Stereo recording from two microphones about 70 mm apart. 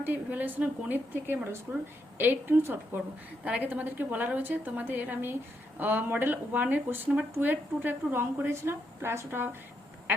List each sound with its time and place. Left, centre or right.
0.0 s a woman's voice: right
3.4 s speech: right